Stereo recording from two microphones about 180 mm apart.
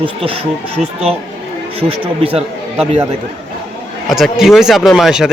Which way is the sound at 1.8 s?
30° right (ahead or behind).